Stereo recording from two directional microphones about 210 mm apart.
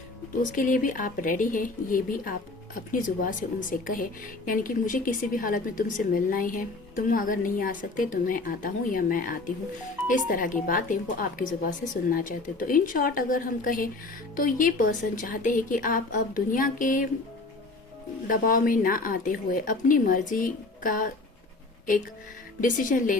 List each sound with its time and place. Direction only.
0.5 s a woman's voice: 40° left (ahead or behind)
18.3 s a woman's voice: 40° left (ahead or behind)
22.6 s a woman's voice: 40° left (ahead or behind)